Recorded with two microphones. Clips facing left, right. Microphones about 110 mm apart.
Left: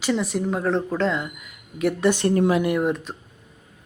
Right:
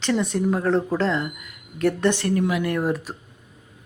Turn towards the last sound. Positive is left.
turn(degrees=-5)  # may be behind; listen again after turning